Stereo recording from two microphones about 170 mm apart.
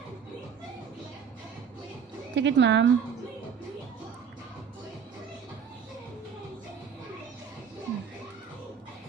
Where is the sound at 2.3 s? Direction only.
90° right.